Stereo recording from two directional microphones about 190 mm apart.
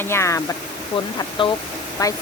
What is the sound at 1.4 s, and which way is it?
Speech, 25° left (ahead or behind).